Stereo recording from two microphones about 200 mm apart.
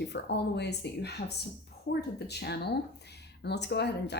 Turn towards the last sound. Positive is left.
turn(degrees=55)  # may be behind; listen again after turning